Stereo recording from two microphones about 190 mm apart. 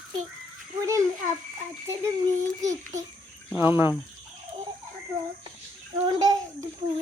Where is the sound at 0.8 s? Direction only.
15° right (ahead or behind).